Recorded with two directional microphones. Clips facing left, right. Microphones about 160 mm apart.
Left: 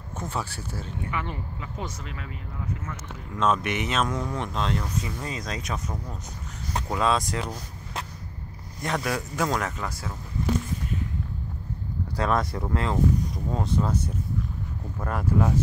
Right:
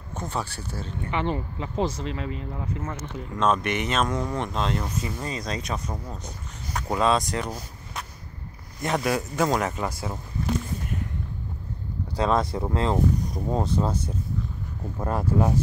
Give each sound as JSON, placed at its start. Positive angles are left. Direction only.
{"t": 0.2, "sound": "speech", "side_deg": 5}
{"t": 1.1, "sound": "speech", "side_deg": -30}
{"t": 3.3, "sound": "speech", "side_deg": 5}
{"t": 6.9, "sound": "speech", "side_deg": 0}
{"t": 8.8, "sound": "speech", "side_deg": -5}
{"t": 9.7, "sound": "speech", "side_deg": -25}
{"t": 12.2, "sound": "speech", "side_deg": -20}